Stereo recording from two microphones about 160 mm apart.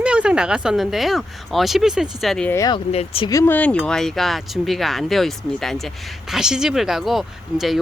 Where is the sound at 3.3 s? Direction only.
20° left (ahead or behind).